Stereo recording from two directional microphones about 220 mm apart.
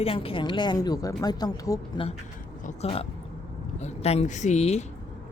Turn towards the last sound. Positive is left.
turn(degrees=30)  # may be behind; listen again after turning